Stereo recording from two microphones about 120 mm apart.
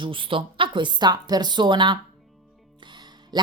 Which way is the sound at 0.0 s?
45° right (ahead or behind).